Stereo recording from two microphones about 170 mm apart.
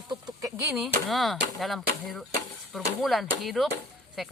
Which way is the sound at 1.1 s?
Centre (ahead or behind).